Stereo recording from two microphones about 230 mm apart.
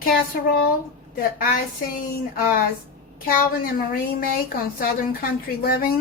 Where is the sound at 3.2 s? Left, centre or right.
Left.